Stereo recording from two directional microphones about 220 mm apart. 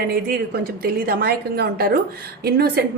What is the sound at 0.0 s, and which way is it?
A woman's voice, 45° right (ahead or behind).